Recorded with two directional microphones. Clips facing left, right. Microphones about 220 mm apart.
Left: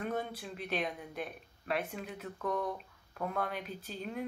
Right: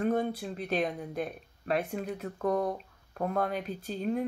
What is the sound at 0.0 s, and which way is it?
Speech, 40° right (ahead or behind).